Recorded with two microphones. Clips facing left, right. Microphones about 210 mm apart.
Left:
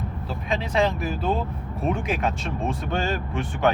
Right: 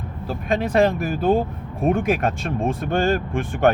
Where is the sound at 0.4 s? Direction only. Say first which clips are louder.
Right 5 dB; 55° right (ahead or behind).